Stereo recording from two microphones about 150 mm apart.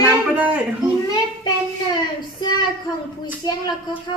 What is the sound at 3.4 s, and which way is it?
Speech, 25° left (ahead or behind).